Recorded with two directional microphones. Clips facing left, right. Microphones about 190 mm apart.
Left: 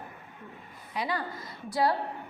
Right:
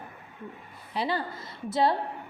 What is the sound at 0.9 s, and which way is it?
A woman's voice, 30° right (ahead or behind).